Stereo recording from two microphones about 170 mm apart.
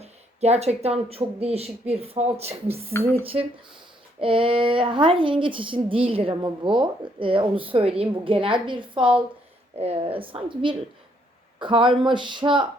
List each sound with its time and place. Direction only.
0.0 s a woman's voice: 40° right (ahead or behind)
4.2 s a woman's voice: 30° right (ahead or behind)